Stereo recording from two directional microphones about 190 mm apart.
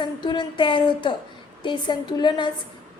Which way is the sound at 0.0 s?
25° left (ahead or behind).